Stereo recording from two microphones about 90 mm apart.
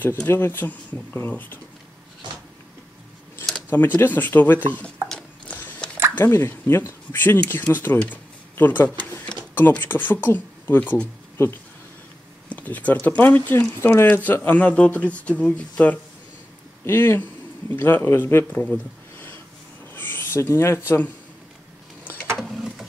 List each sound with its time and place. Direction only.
0.0 s speech: 25° left (ahead or behind)
3.7 s speech: 20° left (ahead or behind)
5.5 s biting: 20° left (ahead or behind)
6.1 s speech: 25° left (ahead or behind)
12.4 s speech: 15° left (ahead or behind)
18.6 s a sound: 20° left (ahead or behind)
19.9 s speech: 20° left (ahead or behind)
22.0 s vehicle: 20° left (ahead or behind)
22.4 s a sound: centre (ahead or behind)